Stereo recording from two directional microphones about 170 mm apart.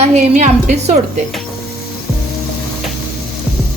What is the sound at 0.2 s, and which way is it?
Speech, 45° right (ahead or behind).